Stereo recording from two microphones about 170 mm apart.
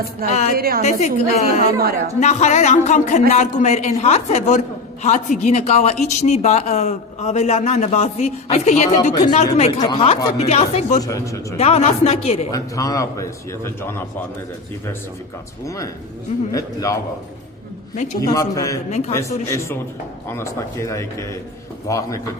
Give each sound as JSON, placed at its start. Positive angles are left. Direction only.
{"t": 0.3, "sound": "speech", "side_deg": 45}
{"t": 0.5, "sound": "a woman's voice", "side_deg": -60}
{"t": 0.8, "sound": "a woman's voice", "side_deg": 40}
{"t": 9.8, "sound": "a man's voice", "side_deg": 30}
{"t": 11.0, "sound": "a man's voice", "side_deg": 20}
{"t": 11.5, "sound": "a woman's voice", "side_deg": 35}
{"t": 12.5, "sound": "a man's voice", "side_deg": 20}
{"t": 15.6, "sound": "a man's voice", "side_deg": 20}
{"t": 17.9, "sound": "speech", "side_deg": 45}
{"t": 18.2, "sound": "a man's voice", "side_deg": 20}
{"t": 18.9, "sound": "a woman's voice", "side_deg": 40}
{"t": 19.1, "sound": "a man's voice", "side_deg": 15}